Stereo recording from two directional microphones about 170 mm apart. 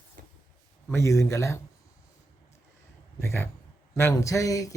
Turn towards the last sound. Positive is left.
turn(degrees=20)  # may be behind; listen again after turning